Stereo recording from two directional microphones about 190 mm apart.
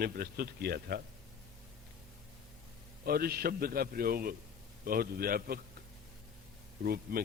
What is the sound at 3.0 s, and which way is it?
Speech, 55° right (ahead or behind).